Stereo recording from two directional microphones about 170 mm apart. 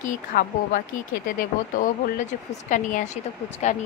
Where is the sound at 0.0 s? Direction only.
55° left (ahead or behind).